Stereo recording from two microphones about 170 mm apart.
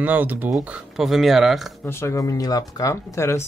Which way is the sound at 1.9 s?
15° left (ahead or behind).